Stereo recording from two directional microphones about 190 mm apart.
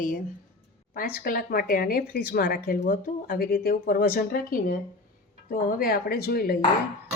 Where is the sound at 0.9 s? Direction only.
50° left (ahead or behind).